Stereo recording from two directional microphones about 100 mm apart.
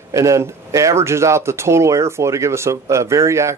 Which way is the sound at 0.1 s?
30° right (ahead or behind).